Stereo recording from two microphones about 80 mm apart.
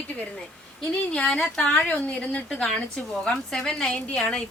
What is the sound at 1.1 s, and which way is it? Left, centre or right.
A woman's voice, centre.